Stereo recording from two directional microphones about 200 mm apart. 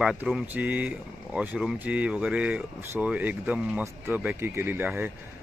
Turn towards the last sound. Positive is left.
turn(degrees=-10)  # may be behind; listen again after turning